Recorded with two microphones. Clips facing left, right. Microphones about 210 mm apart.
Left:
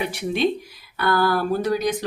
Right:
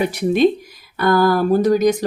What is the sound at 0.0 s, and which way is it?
Speech, 40° right (ahead or behind).